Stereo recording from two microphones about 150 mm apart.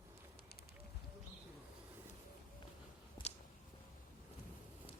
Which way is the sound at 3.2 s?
30° left (ahead or behind).